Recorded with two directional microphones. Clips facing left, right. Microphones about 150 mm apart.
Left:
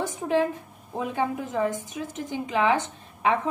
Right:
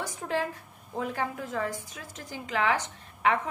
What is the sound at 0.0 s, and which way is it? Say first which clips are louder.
A woman's voice: left 7 dB; 20° left (ahead or behind).